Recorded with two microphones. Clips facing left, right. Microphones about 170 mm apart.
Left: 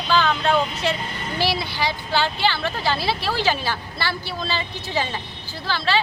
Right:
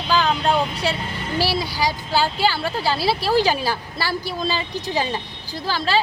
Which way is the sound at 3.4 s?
40° right (ahead or behind).